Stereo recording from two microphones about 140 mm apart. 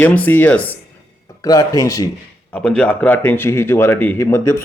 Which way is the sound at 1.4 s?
25° left (ahead or behind).